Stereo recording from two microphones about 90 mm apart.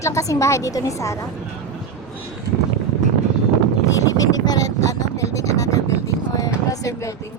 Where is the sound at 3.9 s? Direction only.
40° left (ahead or behind).